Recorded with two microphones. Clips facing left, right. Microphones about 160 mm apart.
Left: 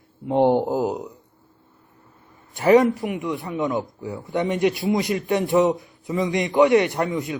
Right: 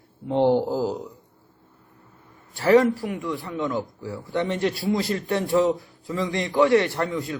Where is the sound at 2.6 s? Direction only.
20° left (ahead or behind).